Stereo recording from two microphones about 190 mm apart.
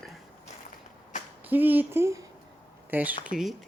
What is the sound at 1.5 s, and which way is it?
Speech, 10° right (ahead or behind).